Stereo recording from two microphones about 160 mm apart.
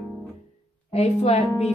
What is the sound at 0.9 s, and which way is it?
Music, 45° left (ahead or behind).